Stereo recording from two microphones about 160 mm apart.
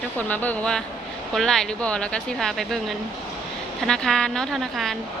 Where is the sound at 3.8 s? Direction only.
5° left (ahead or behind).